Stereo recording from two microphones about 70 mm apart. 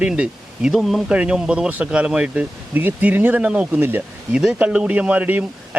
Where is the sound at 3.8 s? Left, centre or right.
Right.